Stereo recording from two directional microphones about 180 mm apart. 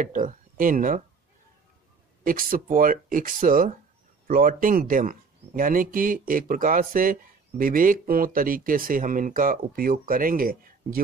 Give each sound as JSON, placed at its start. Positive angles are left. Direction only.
{"t": 0.0, "sound": "speech", "side_deg": -45}
{"t": 2.2, "sound": "speech", "side_deg": -50}